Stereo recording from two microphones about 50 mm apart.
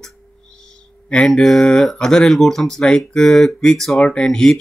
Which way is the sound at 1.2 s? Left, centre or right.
Centre.